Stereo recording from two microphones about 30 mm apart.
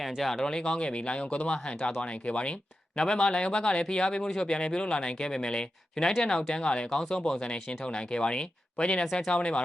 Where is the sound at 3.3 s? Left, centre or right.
Left.